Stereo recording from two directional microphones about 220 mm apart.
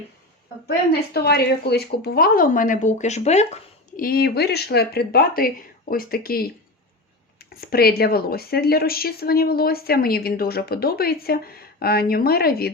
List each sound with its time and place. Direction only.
1.1 s speech: 45° left (ahead or behind)
7.5 s speech: 45° left (ahead or behind)